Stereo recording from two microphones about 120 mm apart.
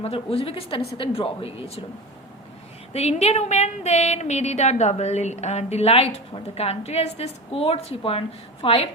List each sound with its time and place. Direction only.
0.0 s speech: 55° left (ahead or behind)
2.9 s speech: 60° left (ahead or behind)